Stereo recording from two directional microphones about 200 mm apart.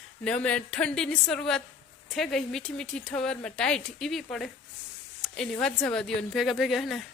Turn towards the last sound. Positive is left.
turn(degrees=0)  # may be behind; listen again after turning